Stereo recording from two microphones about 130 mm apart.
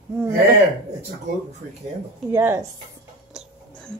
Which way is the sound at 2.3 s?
20° right (ahead or behind).